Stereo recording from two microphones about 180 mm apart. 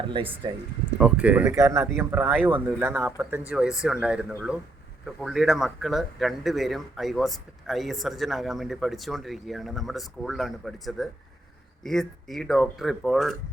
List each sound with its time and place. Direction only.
0.0 s speech: 25° right (ahead or behind)
0.9 s speech: 5° right (ahead or behind)